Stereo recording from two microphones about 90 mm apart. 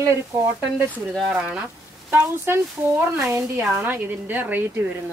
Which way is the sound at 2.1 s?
25° right (ahead or behind).